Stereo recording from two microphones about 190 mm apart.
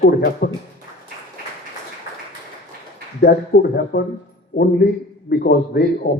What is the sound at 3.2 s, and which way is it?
A man's voice, 55° left (ahead or behind).